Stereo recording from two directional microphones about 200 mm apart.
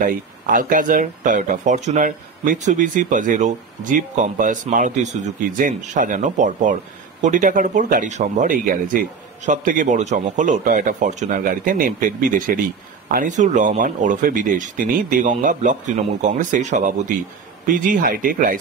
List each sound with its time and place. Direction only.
0.0 s speech: 45° right (ahead or behind)